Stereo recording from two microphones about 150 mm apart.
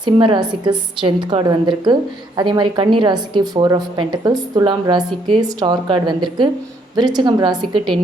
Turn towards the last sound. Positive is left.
turn(degrees=-30)  # may be behind; listen again after turning